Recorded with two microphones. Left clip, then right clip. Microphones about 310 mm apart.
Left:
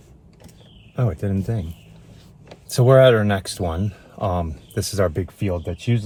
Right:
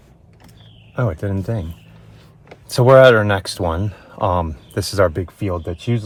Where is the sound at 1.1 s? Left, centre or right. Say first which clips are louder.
Right 2 dB; centre.